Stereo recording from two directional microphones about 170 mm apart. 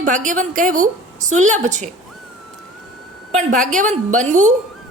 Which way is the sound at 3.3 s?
45° right (ahead or behind).